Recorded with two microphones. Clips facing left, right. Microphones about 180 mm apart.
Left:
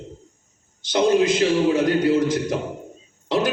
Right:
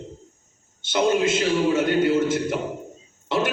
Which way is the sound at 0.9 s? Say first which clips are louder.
Left 3 dB; 35° left (ahead or behind).